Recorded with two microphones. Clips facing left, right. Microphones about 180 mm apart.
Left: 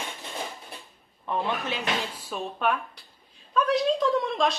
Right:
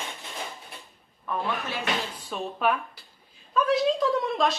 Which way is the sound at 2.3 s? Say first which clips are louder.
Right 1 dB; centre (ahead or behind).